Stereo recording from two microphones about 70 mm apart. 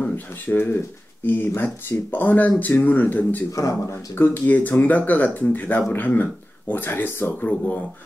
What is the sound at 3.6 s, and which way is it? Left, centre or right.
Speech, left.